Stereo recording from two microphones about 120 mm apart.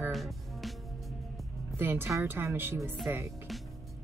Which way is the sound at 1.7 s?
20° right (ahead or behind).